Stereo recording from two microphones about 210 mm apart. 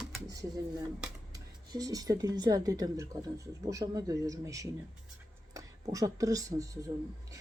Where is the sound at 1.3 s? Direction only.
15° right (ahead or behind).